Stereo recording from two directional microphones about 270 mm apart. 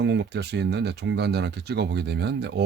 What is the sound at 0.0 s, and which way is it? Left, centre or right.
Speech, right.